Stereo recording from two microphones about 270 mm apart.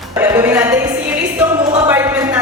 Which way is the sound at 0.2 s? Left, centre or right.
Centre.